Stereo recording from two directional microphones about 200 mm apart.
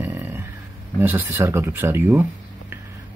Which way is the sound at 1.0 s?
10° right (ahead or behind).